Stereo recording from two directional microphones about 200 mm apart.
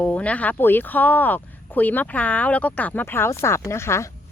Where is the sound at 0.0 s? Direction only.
5° left (ahead or behind).